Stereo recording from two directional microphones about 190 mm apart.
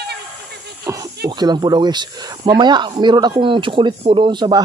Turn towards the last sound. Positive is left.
turn(degrees=-25)  # may be behind; listen again after turning